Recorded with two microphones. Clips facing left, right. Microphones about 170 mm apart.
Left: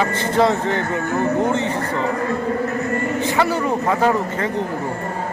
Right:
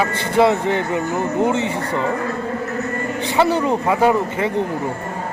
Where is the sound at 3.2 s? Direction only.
20° right (ahead or behind).